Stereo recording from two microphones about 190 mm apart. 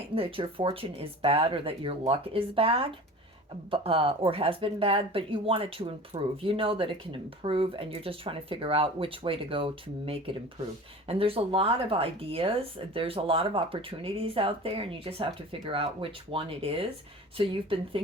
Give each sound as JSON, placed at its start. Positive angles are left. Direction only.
{"t": 0.1, "sound": "speech", "side_deg": -30}